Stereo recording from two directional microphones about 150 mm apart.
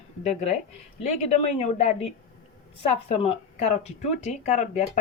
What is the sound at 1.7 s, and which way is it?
A woman's voice, 50° left (ahead or behind).